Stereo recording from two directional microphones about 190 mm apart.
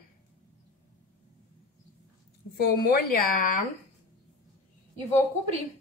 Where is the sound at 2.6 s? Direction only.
50° left (ahead or behind).